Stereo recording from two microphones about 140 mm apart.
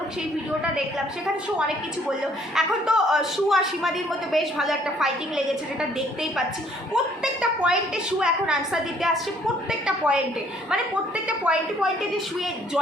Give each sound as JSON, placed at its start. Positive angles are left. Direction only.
{"t": 2.6, "sound": "a man's voice", "side_deg": -5}
{"t": 6.9, "sound": "a man's voice", "side_deg": -5}
{"t": 11.3, "sound": "a woman's voice", "side_deg": -10}